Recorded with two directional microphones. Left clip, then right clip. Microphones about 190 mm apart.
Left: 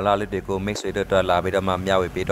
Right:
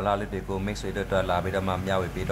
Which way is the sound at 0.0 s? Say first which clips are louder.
Left 6 dB; 35° left (ahead or behind).